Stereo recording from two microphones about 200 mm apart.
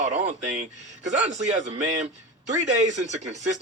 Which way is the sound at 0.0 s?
35° right (ahead or behind).